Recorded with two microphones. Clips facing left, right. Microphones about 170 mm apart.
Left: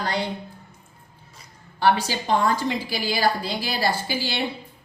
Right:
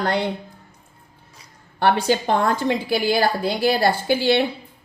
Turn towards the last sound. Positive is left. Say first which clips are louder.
# right 9 dB
turn(degrees=-60)  # may be behind; listen again after turning